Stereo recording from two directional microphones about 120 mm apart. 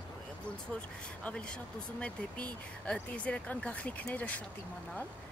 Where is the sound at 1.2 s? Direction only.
10° left (ahead or behind).